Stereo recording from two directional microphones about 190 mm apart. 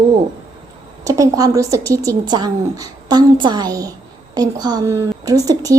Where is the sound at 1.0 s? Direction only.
15° right (ahead or behind).